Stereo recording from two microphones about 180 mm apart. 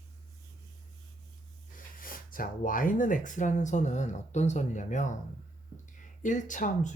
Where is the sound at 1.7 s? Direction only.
50° left (ahead or behind).